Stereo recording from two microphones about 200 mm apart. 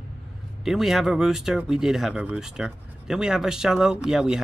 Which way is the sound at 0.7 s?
Centre (ahead or behind).